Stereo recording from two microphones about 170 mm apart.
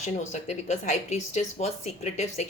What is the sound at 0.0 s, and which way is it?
A woman's voice, 45° left (ahead or behind).